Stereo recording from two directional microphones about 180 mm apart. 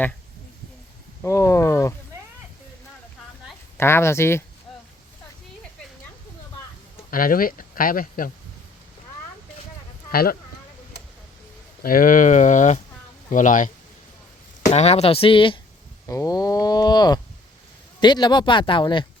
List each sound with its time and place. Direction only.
1.2 s speech: 15° left (ahead or behind)
3.8 s speech: 15° left (ahead or behind)
7.1 s speech: 50° left (ahead or behind)
10.1 s speech: 55° left (ahead or behind)
11.8 s speech: 50° left (ahead or behind); by 15.5 s 30° left (ahead or behind)
16.0 s livestock: 20° left (ahead or behind)
18.0 s speech: 25° left (ahead or behind)